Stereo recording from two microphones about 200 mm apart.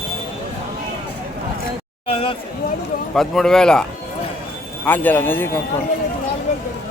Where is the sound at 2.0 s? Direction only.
30° left (ahead or behind).